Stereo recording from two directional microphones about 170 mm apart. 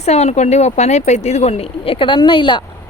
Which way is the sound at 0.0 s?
40° left (ahead or behind).